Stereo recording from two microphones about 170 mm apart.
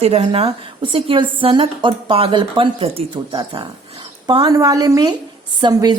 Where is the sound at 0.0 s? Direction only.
35° right (ahead or behind).